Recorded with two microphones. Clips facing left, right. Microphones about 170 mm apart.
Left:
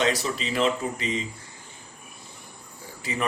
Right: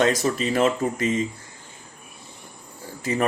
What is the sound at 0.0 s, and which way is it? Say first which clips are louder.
Speech: right 5 dB; 45° right (ahead or behind).